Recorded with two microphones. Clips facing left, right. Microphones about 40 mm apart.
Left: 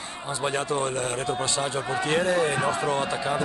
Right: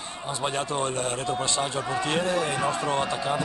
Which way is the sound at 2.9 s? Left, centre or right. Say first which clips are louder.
Even; centre.